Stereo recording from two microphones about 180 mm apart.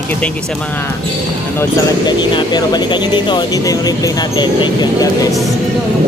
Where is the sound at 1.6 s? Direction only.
25° left (ahead or behind).